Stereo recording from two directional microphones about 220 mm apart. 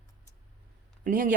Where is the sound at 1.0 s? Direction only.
40° right (ahead or behind).